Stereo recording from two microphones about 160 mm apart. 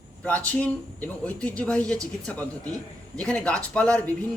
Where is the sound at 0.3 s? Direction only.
10° left (ahead or behind).